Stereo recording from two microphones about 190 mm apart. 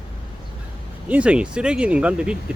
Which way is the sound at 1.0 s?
5° right (ahead or behind).